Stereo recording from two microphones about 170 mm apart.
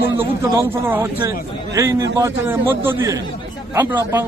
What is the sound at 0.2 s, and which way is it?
A man's voice, 15° right (ahead or behind).